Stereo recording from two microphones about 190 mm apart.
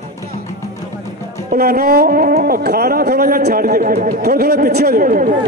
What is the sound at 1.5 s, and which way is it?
Speech, 50° right (ahead or behind).